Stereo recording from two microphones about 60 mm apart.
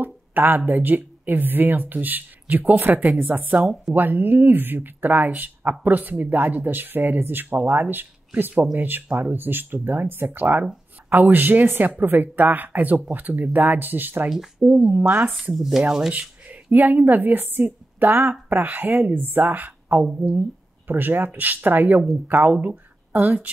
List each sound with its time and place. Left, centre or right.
0.0 s speech: right
15.5 s chopping: centre
16.1 s a sound: right
16.7 s speech: right